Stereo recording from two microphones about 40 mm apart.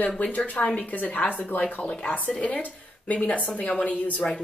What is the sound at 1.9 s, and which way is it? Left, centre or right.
A woman's voice, left.